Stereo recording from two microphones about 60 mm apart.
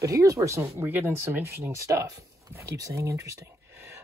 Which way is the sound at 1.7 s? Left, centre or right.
Right.